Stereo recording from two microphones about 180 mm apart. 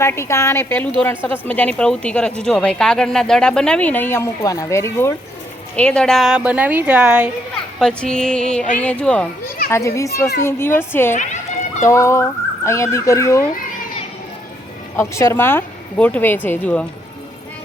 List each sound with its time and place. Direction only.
0.0 s a woman's voice: 15° left (ahead or behind); by 7.3 s 5° right (ahead or behind)
7.8 s a woman's voice: 5° left (ahead or behind)
11.1 s speech: 40° left (ahead or behind)
11.8 s speech: 15° left (ahead or behind)
14.9 s speech: 15° left (ahead or behind)